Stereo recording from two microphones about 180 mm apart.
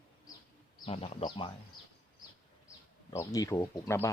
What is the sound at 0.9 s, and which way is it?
Speech, 35° left (ahead or behind).